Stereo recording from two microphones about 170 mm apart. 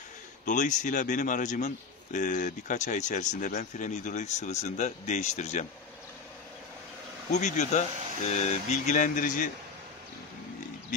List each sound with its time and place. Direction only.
0.5 s speech: 45° left (ahead or behind)
7.2 s speech: 45° left (ahead or behind)